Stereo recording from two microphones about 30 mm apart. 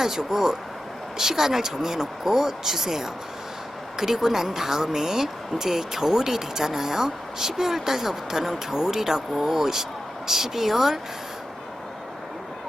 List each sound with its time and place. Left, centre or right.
0.0 s speech: centre